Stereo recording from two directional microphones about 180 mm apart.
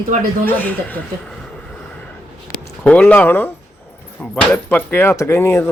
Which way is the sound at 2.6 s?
10° left (ahead or behind).